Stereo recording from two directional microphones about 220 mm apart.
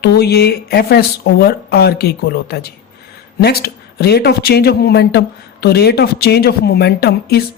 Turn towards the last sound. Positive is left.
turn(degrees=45)  # may be behind; listen again after turning